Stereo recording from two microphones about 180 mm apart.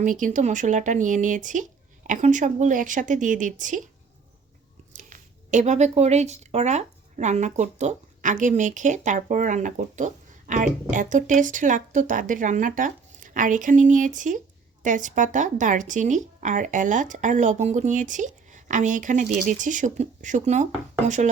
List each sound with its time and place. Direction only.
0.0 s speech: 45° right (ahead or behind)
4.9 s speech: 45° right (ahead or behind)